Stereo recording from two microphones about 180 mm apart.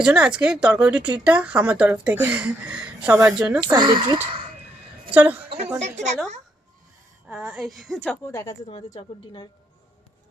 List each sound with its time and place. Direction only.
0.0 s speech: 5° right (ahead or behind)
3.8 s speech: 25° right (ahead or behind)
5.1 s a woman's voice: 10° right (ahead or behind)
5.8 s a woman's voice: 40° right (ahead or behind)
7.3 s speech: 5° right (ahead or behind)
8.3 s a woman's voice: 15° left (ahead or behind)